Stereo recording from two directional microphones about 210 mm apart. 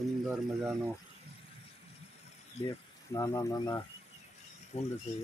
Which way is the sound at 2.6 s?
30° left (ahead or behind).